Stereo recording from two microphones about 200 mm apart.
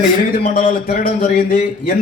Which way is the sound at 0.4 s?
40° left (ahead or behind).